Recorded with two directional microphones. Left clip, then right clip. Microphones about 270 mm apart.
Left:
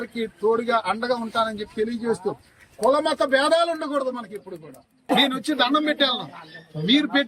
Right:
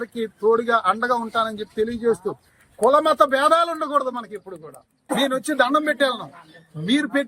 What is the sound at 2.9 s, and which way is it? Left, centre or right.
Speech, centre.